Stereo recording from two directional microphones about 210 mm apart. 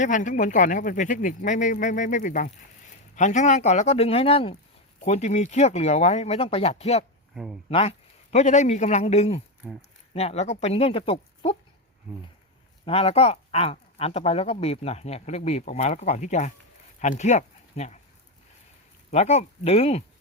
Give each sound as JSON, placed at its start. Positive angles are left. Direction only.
{"t": 0.0, "sound": "speech", "side_deg": 35}
{"t": 7.3, "sound": "speech", "side_deg": -5}
{"t": 7.7, "sound": "speech", "side_deg": 25}
{"t": 9.6, "sound": "speech", "side_deg": -10}
{"t": 10.2, "sound": "speech", "side_deg": 30}
{"t": 12.8, "sound": "speech", "side_deg": 30}
{"t": 19.1, "sound": "speech", "side_deg": 30}